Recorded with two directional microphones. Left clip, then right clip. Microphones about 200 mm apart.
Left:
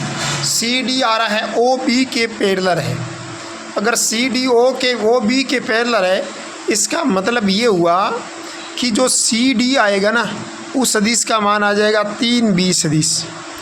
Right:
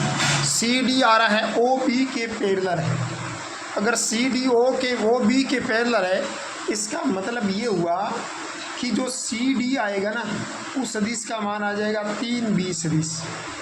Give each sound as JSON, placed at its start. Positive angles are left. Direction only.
{"t": 0.4, "sound": "speech", "side_deg": 10}
{"t": 1.9, "sound": "a man's voice", "side_deg": 40}
{"t": 3.8, "sound": "speech", "side_deg": 20}
{"t": 6.7, "sound": "a man's voice", "side_deg": 45}